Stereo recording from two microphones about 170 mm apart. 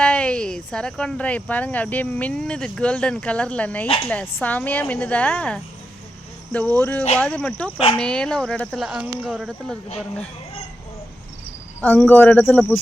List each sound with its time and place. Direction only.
0.0 s speech: 5° left (ahead or behind)
3.8 s speech: 35° left (ahead or behind)
4.1 s speech: 10° left (ahead or behind)
11.8 s speech: 10° left (ahead or behind)